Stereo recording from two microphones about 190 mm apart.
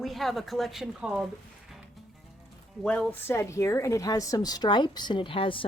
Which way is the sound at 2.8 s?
5° left (ahead or behind).